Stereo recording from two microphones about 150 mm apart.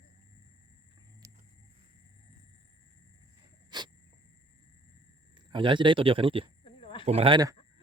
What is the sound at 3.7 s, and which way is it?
Insect, 30° right (ahead or behind).